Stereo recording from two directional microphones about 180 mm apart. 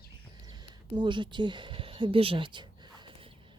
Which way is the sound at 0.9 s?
25° right (ahead or behind).